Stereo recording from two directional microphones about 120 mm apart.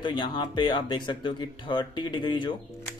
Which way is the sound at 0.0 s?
40° left (ahead or behind).